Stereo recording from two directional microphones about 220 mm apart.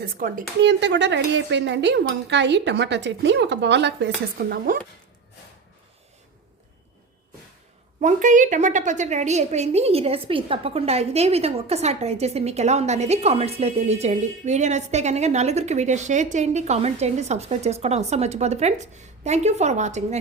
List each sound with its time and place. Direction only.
0.0 s speech: 40° right (ahead or behind)
8.0 s a woman's voice: 35° right (ahead or behind)